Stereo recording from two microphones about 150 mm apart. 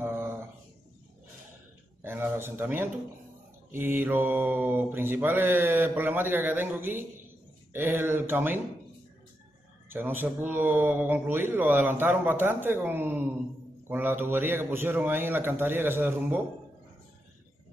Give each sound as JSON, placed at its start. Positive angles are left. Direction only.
{"t": 0.0, "sound": "a sound", "side_deg": -15}
{"t": 2.0, "sound": "mantra", "side_deg": -15}
{"t": 9.8, "sound": "mantra", "side_deg": -15}